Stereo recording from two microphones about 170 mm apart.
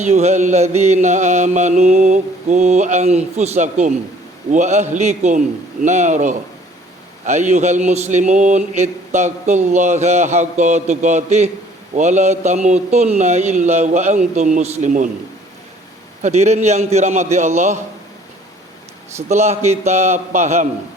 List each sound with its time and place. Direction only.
0.0 s speech: 40° right (ahead or behind)
16.2 s a man's voice: 40° right (ahead or behind)
19.3 s a man's voice: 40° right (ahead or behind)